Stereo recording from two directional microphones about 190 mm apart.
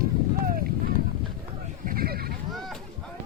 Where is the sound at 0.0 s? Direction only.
50° right (ahead or behind).